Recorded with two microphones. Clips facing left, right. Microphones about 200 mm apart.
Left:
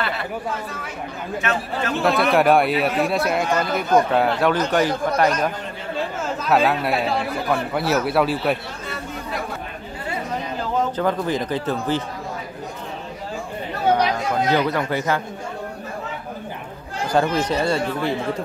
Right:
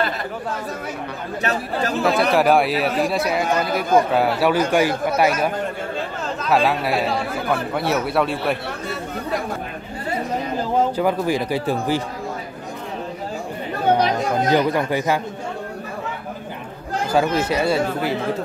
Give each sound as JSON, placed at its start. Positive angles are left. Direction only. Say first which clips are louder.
{"t": 1.4, "sound": "speech", "louder": "right 2 dB", "side_deg": -35}
{"t": 2.0, "sound": "speech", "louder": "even", "side_deg": 0}
{"t": 11.0, "sound": "speech", "louder": "right 2 dB", "side_deg": -10}
{"t": 14.5, "sound": "speech", "louder": "right 3 dB", "side_deg": -15}
{"t": 17.1, "sound": "speech", "louder": "even", "side_deg": -5}